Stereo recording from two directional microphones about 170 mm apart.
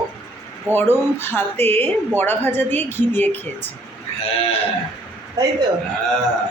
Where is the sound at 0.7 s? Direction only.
10° left (ahead or behind).